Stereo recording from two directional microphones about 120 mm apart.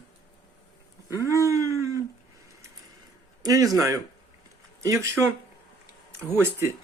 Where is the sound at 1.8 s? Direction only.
25° right (ahead or behind).